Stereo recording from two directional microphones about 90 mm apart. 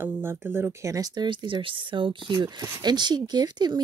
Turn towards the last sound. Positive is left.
turn(degrees=-55)  # may be behind; listen again after turning